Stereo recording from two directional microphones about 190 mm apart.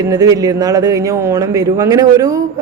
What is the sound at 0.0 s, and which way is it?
A woman's voice, 20° right (ahead or behind).